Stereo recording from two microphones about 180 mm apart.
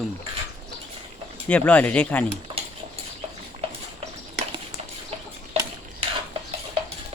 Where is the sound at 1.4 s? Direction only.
5° left (ahead or behind).